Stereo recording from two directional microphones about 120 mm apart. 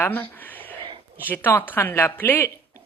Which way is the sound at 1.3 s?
15° left (ahead or behind).